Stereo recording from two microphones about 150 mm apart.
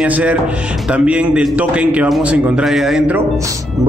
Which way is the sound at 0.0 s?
10° right (ahead or behind).